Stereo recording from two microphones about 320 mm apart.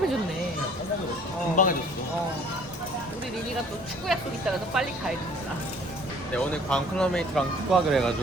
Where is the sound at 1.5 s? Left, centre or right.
Left.